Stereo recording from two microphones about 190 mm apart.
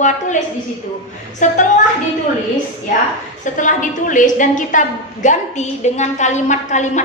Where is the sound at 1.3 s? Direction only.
40° left (ahead or behind).